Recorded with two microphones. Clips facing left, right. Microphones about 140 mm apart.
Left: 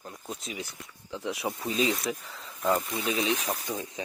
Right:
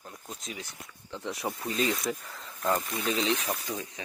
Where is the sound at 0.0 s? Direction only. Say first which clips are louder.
Left 4 dB; 5° left (ahead or behind).